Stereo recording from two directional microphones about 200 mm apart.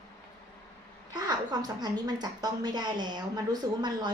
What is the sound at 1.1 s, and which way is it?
A woman's voice, 20° right (ahead or behind).